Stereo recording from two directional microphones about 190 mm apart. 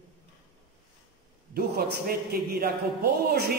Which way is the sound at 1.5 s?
55° right (ahead or behind).